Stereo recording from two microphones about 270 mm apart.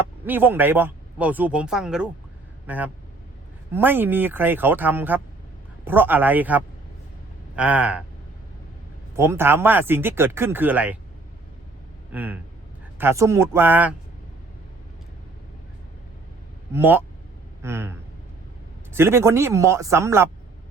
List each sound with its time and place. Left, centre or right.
0.3 s speech: centre
9.1 s speech: centre
12.1 s speech: centre
16.7 s speech: centre
18.9 s speech: centre